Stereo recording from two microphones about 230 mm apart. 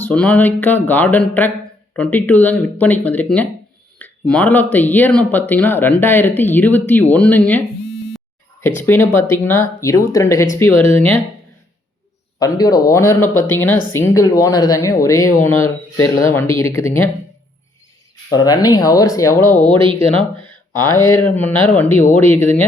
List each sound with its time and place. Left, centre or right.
0.0 s speech: centre
8.6 s speech: centre
12.4 s speech: centre
18.3 s speech: centre
20.8 s speech: centre